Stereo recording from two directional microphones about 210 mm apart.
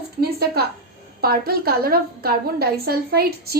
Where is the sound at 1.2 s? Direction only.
45° right (ahead or behind).